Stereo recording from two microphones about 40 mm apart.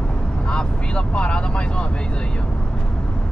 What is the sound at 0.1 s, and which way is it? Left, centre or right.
Speech, left.